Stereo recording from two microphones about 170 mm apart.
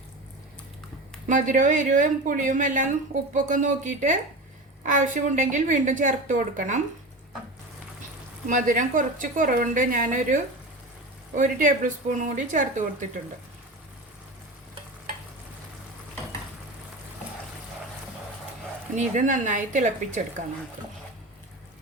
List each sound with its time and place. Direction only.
1.3 s a woman's voice: 50° right (ahead or behind)
8.4 s a woman's voice: 50° right (ahead or behind)
18.9 s a woman's voice: 45° right (ahead or behind)